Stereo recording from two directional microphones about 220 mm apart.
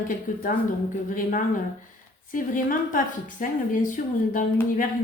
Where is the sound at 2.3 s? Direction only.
40° left (ahead or behind).